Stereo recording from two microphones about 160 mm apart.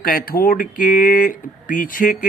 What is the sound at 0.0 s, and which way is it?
Speech, 65° left (ahead or behind).